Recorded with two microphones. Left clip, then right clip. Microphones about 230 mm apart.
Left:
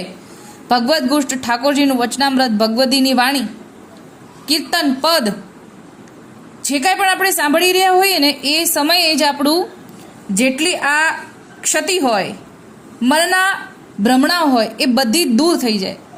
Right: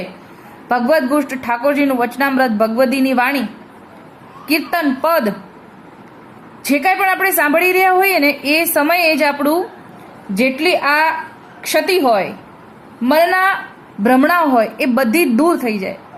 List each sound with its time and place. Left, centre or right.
0.7 s a woman's voice: centre
4.4 s a woman's voice: centre
6.6 s a woman's voice: centre